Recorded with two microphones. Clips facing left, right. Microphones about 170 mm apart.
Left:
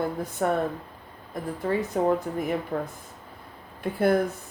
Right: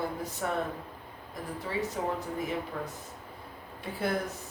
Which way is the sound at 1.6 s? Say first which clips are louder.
Left 9 dB; 55° left (ahead or behind).